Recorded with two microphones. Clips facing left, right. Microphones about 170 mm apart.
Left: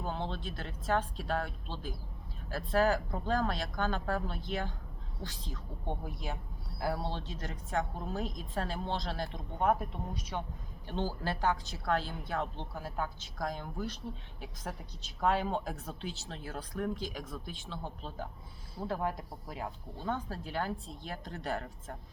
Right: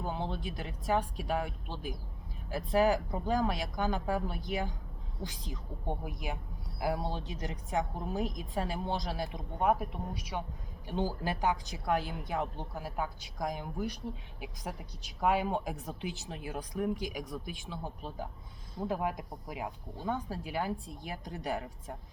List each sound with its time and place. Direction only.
0.0 s speech: 10° right (ahead or behind)